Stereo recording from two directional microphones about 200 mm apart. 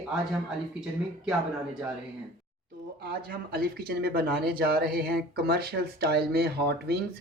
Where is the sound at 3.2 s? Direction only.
50° right (ahead or behind).